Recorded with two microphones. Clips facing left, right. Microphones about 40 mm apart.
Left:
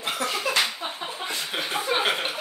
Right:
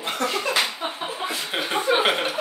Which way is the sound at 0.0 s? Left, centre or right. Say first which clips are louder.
Right 2 dB; centre.